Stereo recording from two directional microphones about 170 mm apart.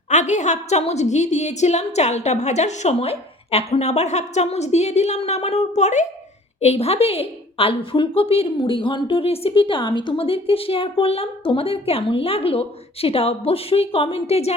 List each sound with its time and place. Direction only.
0.1 s a woman's voice: 45° left (ahead or behind)